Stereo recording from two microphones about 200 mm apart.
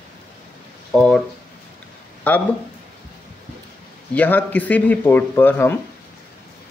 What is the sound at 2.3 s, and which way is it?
Speech, 10° left (ahead or behind).